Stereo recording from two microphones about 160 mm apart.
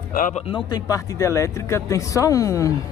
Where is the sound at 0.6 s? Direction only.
25° left (ahead or behind).